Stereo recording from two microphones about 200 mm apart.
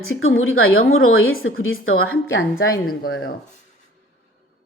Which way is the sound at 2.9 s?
55° left (ahead or behind).